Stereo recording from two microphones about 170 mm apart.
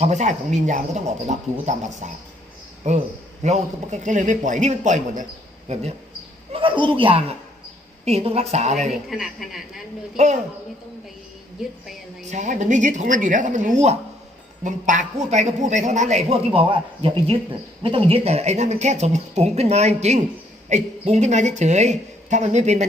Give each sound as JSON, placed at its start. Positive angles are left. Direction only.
{"t": 0.0, "sound": "a man's voice", "side_deg": -45}
{"t": 8.9, "sound": "speech", "side_deg": 0}
{"t": 10.2, "sound": "speech", "side_deg": -45}
{"t": 12.3, "sound": "a man's voice", "side_deg": -45}